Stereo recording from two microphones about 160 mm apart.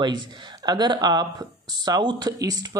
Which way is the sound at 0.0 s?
25° right (ahead or behind).